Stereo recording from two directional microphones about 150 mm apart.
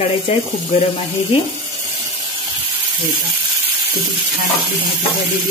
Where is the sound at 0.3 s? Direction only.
40° left (ahead or behind).